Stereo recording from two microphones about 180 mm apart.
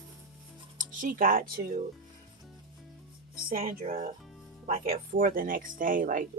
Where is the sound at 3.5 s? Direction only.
50° right (ahead or behind).